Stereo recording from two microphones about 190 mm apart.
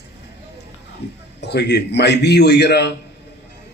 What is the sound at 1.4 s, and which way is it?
A man's voice, 60° left (ahead or behind).